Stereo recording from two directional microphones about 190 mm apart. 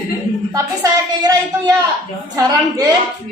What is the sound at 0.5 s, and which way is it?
A woman's voice, 20° right (ahead or behind).